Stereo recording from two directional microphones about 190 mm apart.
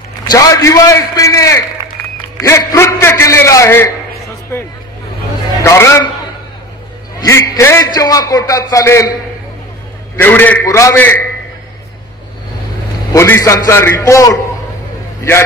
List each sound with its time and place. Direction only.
0.3 s a man's voice: 20° left (ahead or behind)
5.6 s a man's voice: 15° left (ahead or behind)
7.2 s a man's voice: 15° left (ahead or behind)
10.2 s a man's voice: 10° left (ahead or behind)
13.1 s a man's voice: 15° left (ahead or behind)